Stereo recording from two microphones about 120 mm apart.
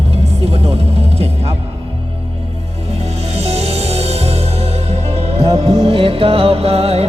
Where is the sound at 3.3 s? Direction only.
60° right (ahead or behind).